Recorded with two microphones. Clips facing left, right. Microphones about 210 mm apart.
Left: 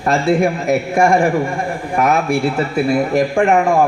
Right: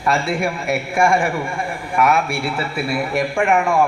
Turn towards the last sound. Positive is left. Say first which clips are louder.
# left 4 dB
turn(degrees=40)  # may be behind; listen again after turning